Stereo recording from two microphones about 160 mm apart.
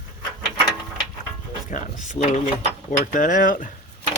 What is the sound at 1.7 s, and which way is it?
Speech, 50° left (ahead or behind).